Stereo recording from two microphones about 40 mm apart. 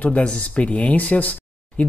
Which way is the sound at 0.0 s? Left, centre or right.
Left.